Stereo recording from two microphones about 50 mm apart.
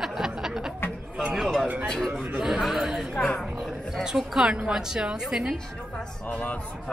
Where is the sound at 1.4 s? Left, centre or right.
Centre.